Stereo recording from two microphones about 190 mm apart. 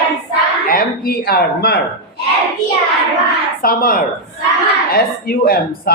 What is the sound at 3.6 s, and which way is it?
Speech, 50° left (ahead or behind).